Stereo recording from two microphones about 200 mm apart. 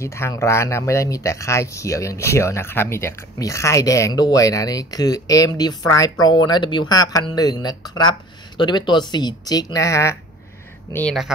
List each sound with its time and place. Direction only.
0.0 s speech: 15° left (ahead or behind)